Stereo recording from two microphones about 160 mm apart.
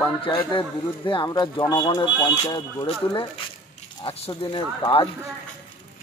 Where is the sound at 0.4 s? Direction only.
30° left (ahead or behind).